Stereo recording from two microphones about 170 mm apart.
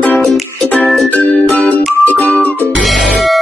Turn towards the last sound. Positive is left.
turn(degrees=0)  # may be behind; listen again after turning